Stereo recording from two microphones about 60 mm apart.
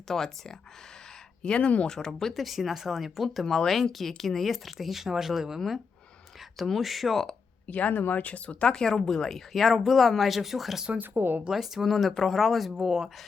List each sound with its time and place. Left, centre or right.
0.1 s speech: centre
1.4 s speech: centre
7.7 s speech: left; by 10.8 s centre
11.0 s speech: right
11.4 s speech: centre